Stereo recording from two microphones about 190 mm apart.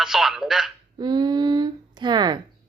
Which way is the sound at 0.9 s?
20° right (ahead or behind).